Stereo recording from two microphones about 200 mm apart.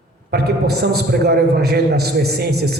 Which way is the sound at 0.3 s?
55° right (ahead or behind).